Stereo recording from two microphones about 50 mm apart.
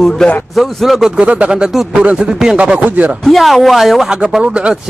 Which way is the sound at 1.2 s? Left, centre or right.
Right.